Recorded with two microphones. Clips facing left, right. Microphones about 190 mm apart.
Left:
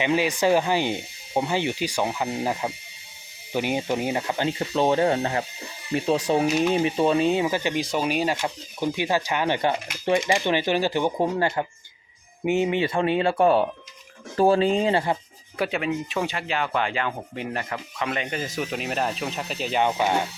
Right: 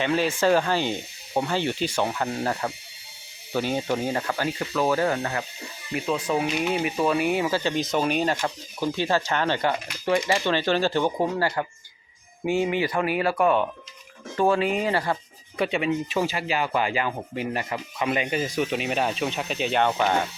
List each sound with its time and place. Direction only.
0.0 s speech: 15° left (ahead or behind)
15.5 s speech: centre (ahead or behind)
19.8 s speech: 15° left (ahead or behind)